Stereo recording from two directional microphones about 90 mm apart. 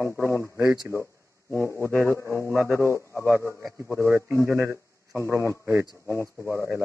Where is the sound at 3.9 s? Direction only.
25° right (ahead or behind).